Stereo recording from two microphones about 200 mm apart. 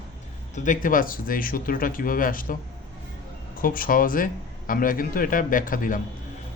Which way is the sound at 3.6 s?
45° left (ahead or behind).